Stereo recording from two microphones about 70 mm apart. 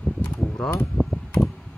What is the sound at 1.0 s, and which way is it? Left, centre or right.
Mechanical fan, centre.